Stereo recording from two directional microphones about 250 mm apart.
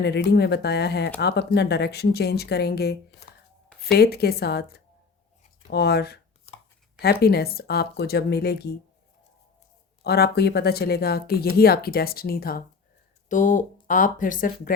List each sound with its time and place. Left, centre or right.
0.0 s speech: left
10.0 s speech: left